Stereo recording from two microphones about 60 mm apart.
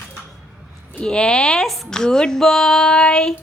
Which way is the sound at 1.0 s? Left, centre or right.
Centre.